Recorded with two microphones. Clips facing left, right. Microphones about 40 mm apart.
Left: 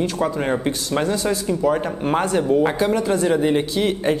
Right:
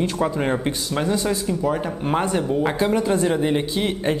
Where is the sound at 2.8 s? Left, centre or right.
Centre.